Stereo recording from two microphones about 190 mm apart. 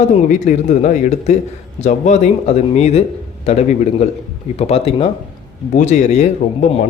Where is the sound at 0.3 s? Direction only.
40° left (ahead or behind).